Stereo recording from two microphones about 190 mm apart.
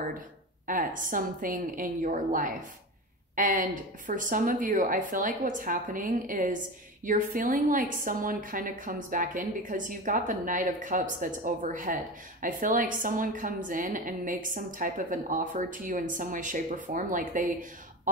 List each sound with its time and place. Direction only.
0.7 s a woman's voice: 45° right (ahead or behind)